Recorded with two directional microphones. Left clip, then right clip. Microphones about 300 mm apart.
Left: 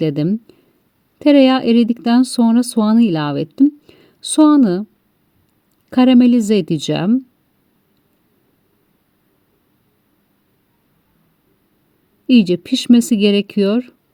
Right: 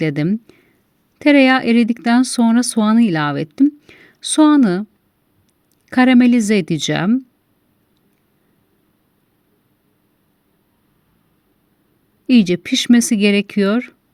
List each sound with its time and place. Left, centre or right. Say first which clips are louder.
0.0 s speech: left 1 dB; right
5.9 s speech: left 1 dB; right
12.4 s speech: even; right